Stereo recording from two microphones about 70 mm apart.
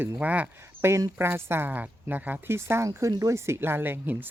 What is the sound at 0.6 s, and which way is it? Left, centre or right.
Speech, right.